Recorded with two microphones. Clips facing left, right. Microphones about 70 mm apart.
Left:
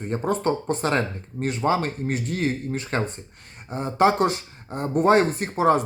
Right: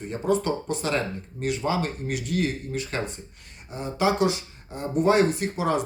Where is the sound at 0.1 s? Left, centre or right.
Left.